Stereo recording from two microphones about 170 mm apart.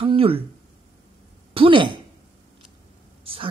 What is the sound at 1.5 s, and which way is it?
Speech, 30° right (ahead or behind).